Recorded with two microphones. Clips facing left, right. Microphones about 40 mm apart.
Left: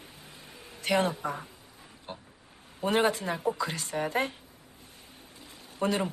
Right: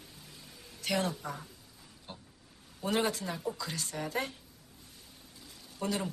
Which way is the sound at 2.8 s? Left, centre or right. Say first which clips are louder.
Left 5 dB; left.